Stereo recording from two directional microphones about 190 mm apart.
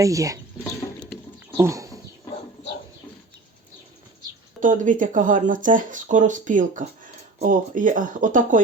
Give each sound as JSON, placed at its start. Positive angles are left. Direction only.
{"t": 0.0, "sound": "speech", "side_deg": -15}
{"t": 1.5, "sound": "speech", "side_deg": -15}
{"t": 4.6, "sound": "speech", "side_deg": -45}